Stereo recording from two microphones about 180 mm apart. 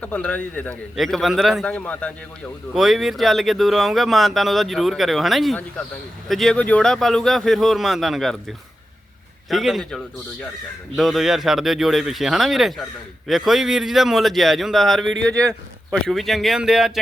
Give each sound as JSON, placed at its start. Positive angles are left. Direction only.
{"t": 0.0, "sound": "a man's voice", "side_deg": 10}
{"t": 9.5, "sound": "speech", "side_deg": 0}
{"t": 15.3, "sound": "a man's voice", "side_deg": -20}
{"t": 15.9, "sound": "speech", "side_deg": 0}